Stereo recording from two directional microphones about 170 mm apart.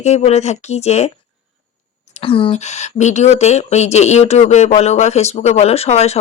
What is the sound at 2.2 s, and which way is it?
Speech, 30° left (ahead or behind).